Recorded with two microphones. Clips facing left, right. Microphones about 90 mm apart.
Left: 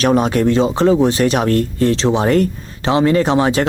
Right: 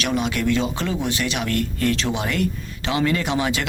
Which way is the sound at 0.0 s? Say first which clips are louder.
Left 9 dB; 40° left (ahead or behind).